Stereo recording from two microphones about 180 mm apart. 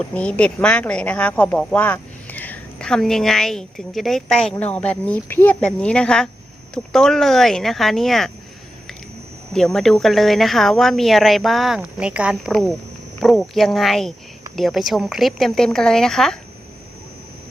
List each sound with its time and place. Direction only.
0.0 s a woman's voice: 5° left (ahead or behind)
9.5 s a woman's voice: 5° left (ahead or behind)